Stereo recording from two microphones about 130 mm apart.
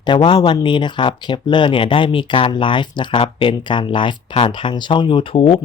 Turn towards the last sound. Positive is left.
turn(degrees=45)  # may be behind; listen again after turning